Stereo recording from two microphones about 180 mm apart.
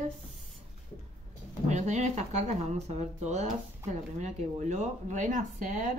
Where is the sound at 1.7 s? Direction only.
40° right (ahead or behind).